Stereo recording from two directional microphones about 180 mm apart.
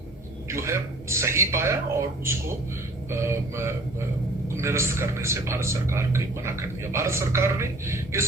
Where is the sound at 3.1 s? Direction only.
15° right (ahead or behind).